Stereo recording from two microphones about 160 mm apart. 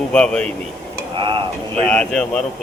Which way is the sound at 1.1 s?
30° right (ahead or behind).